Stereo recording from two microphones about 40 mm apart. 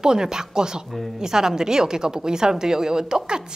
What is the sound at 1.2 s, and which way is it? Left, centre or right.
A woman's voice, centre.